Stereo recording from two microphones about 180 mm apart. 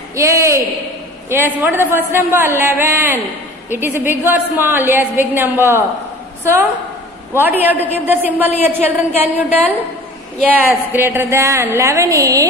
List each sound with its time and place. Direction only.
0.1 s a woman's voice: 15° right (ahead or behind)
7.3 s a woman's voice: 10° right (ahead or behind)
10.9 s a woman's voice: 10° right (ahead or behind)